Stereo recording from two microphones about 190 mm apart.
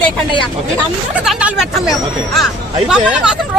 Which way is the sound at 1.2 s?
Centre (ahead or behind).